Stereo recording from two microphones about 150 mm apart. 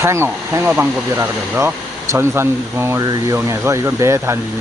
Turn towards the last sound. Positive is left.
turn(degrees=-20)  # may be behind; listen again after turning